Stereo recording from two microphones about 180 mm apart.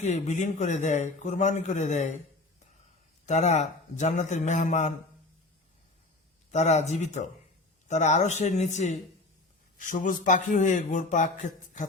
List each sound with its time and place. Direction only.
0.0 s a man's voice: 40° left (ahead or behind)
3.2 s a man's voice: 40° left (ahead or behind)
6.5 s a man's voice: 40° left (ahead or behind)